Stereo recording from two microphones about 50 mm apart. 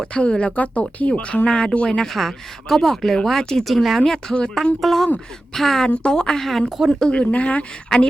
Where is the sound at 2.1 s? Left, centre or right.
Centre.